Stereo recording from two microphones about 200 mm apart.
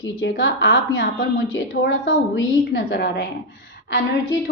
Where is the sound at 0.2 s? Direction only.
70° left (ahead or behind).